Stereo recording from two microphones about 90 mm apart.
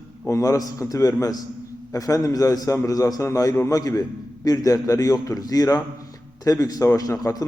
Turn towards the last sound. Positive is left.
turn(degrees=40)  # may be behind; listen again after turning